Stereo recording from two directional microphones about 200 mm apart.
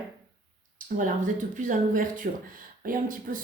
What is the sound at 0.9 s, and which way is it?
Speech, 40° right (ahead or behind).